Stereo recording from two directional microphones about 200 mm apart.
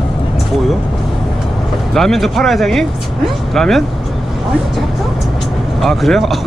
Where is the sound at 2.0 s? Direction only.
Centre (ahead or behind).